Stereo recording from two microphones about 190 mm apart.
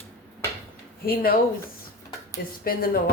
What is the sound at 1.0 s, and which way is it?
Speech, 50° left (ahead or behind).